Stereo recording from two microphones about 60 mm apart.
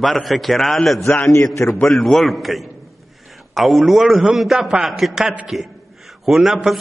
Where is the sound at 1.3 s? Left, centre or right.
Left.